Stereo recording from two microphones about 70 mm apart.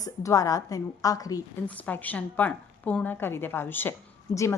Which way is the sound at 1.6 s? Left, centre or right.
Left.